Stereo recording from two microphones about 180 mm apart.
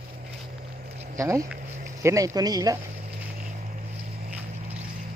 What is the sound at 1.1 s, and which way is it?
Speech, 15° right (ahead or behind).